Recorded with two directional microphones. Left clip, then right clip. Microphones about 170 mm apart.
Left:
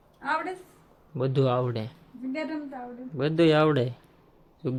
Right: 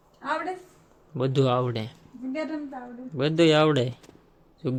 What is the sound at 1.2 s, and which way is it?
Speech, 5° right (ahead or behind).